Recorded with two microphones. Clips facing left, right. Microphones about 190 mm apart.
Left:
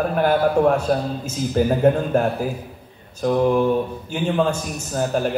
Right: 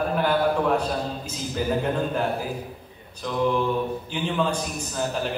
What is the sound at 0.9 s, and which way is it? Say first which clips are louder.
Speech: left 7 dB; 55° left (ahead or behind).